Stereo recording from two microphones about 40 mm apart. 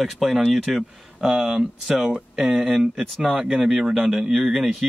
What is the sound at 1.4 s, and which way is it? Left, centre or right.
Speech, centre.